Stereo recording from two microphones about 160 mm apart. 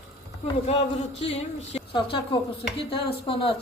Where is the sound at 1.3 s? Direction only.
35° left (ahead or behind).